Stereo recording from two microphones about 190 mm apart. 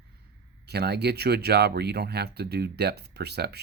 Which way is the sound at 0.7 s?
60° right (ahead or behind).